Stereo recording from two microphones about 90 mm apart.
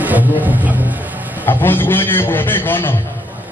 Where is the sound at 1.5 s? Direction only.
25° left (ahead or behind).